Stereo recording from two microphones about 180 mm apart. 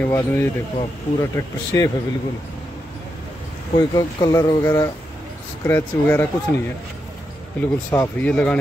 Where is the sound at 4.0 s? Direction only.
20° left (ahead or behind).